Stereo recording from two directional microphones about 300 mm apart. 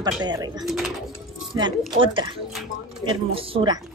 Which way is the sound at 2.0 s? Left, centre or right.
Centre.